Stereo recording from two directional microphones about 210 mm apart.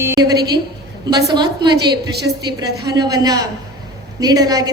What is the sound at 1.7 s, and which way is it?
Speech, 50° right (ahead or behind).